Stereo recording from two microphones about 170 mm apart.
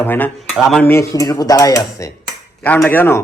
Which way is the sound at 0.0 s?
10° left (ahead or behind).